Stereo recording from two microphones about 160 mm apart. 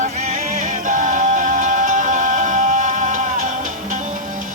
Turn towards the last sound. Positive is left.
turn(degrees=-55)  # may be behind; listen again after turning